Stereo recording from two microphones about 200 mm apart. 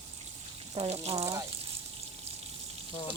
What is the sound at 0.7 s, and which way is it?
Frying, 30° right (ahead or behind).